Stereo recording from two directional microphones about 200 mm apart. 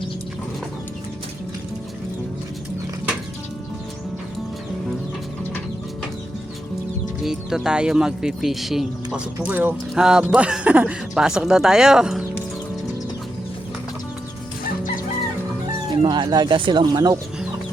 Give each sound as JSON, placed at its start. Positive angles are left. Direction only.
{"t": 7.2, "sound": "speech", "side_deg": 0}
{"t": 16.0, "sound": "speech", "side_deg": -20}